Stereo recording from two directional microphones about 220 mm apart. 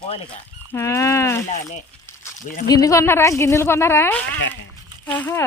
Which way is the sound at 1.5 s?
30° left (ahead or behind).